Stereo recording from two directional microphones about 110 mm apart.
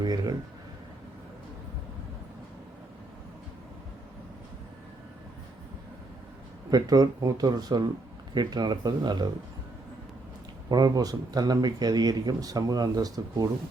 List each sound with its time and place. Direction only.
0.0 s a sound: 35° right (ahead or behind)
6.7 s speech: 35° right (ahead or behind)
10.7 s speech: 35° right (ahead or behind)